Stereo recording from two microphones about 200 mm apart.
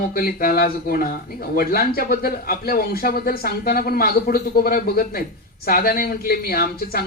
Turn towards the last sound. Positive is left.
turn(degrees=50)  # may be behind; listen again after turning